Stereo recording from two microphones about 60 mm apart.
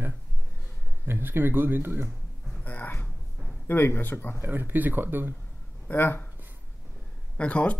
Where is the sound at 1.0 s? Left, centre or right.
Right.